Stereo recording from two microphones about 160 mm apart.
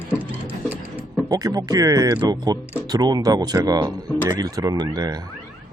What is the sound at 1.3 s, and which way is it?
Speech, 25° right (ahead or behind).